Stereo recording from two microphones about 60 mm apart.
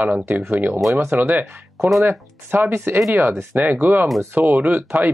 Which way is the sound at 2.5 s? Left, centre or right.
Right.